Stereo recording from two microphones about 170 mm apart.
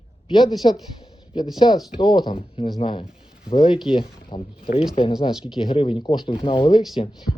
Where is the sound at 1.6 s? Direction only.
25° left (ahead or behind).